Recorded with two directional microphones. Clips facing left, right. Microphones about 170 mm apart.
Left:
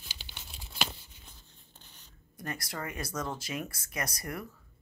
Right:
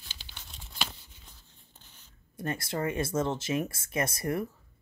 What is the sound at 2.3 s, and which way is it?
Speech, 25° right (ahead or behind).